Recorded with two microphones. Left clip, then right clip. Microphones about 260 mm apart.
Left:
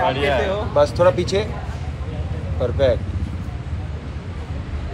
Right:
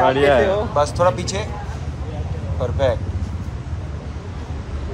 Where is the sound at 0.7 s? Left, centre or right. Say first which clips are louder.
Left 5 dB; centre.